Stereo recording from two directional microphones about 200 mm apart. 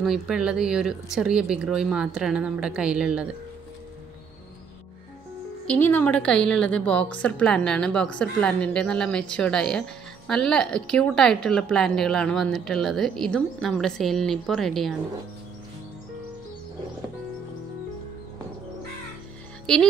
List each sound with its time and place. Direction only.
0.0 s a woman's voice: 5° right (ahead or behind)
5.7 s a woman's voice: 10° left (ahead or behind)
19.6 s speech: 5° left (ahead or behind)